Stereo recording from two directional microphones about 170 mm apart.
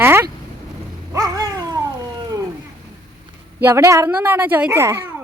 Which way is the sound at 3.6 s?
15° right (ahead or behind).